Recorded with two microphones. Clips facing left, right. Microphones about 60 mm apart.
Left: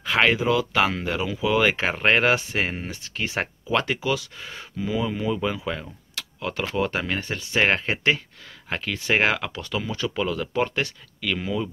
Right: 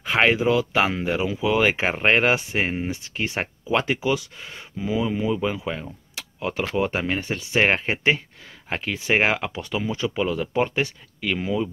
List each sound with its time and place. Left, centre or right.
0.0 s speech: centre